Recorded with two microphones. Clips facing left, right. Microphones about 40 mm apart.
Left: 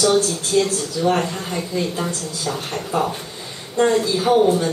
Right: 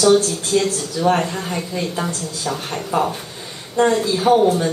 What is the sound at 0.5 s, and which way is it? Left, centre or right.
A woman's voice, right.